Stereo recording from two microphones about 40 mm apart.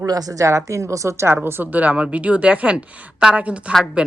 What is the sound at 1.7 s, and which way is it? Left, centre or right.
A woman's voice, right.